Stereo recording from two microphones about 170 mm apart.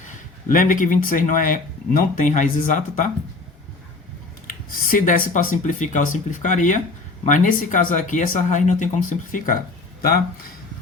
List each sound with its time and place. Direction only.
0.4 s speech: 50° left (ahead or behind)
4.9 s speech: 55° left (ahead or behind)